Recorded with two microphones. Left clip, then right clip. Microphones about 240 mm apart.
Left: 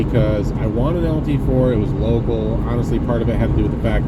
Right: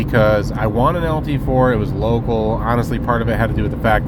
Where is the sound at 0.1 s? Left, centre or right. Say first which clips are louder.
Right 5 dB; right.